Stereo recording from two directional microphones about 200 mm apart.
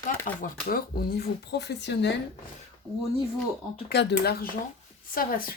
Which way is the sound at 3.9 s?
55° left (ahead or behind).